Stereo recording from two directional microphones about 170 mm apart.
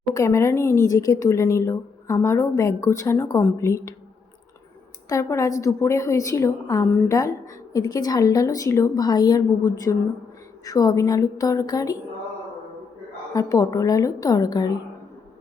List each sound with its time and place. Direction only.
0.1 s speech: 15° left (ahead or behind)
5.0 s a woman's voice: 20° left (ahead or behind)
13.3 s a woman's voice: 20° left (ahead or behind)